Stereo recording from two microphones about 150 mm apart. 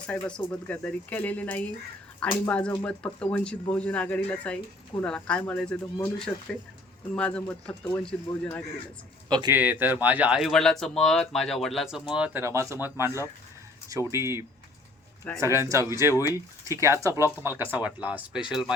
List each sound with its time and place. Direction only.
0.1 s speech: 5° left (ahead or behind)
9.5 s speech: 10° right (ahead or behind)
12.4 s a man's voice: 20° right (ahead or behind); by 18.7 s 5° right (ahead or behind)